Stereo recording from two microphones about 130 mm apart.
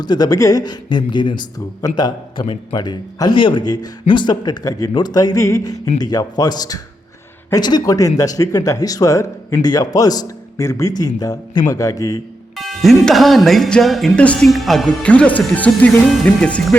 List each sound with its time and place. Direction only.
0.0 s a man's voice: 30° left (ahead or behind)
12.5 s speech: centre (ahead or behind)